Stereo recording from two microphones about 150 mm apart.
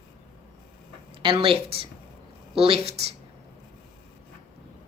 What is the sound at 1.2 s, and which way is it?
Speech, 35° right (ahead or behind).